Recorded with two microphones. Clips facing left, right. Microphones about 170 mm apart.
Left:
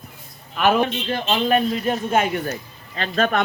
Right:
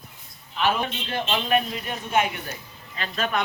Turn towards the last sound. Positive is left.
turn(degrees=50)  # may be behind; listen again after turning